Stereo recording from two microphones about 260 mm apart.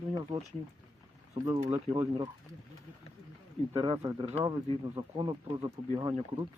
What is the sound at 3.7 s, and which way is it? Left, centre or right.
Speech, centre.